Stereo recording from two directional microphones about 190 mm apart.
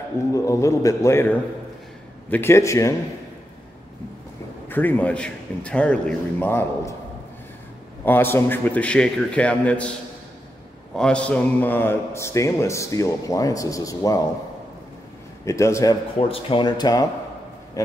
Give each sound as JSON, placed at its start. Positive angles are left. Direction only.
{"t": 0.3, "sound": "speech", "side_deg": 15}
{"t": 4.6, "sound": "speech", "side_deg": 10}
{"t": 8.0, "sound": "speech", "side_deg": 10}
{"t": 11.0, "sound": "speech", "side_deg": 5}
{"t": 15.4, "sound": "speech", "side_deg": 15}
{"t": 16.2, "sound": "speech", "side_deg": 30}